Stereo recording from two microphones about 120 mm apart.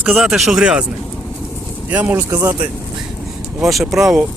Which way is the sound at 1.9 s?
15° right (ahead or behind).